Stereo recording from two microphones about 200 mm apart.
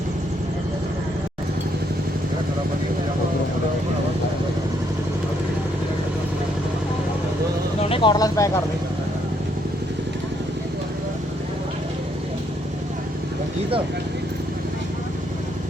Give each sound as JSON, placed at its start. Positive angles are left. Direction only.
{"t": 7.8, "sound": "speech", "side_deg": 30}